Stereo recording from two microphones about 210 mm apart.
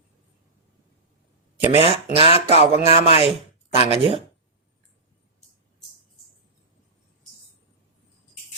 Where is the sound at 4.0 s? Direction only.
25° right (ahead or behind).